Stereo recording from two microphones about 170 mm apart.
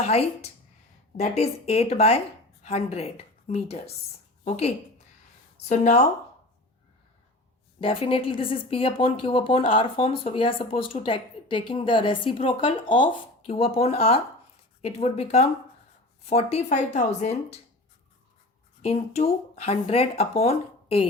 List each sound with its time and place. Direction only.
0.0 s speech: 35° left (ahead or behind)
7.8 s speech: 30° left (ahead or behind)
18.8 s speech: 35° left (ahead or behind)